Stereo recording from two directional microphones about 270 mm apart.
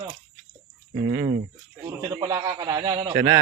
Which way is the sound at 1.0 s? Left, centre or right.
Centre.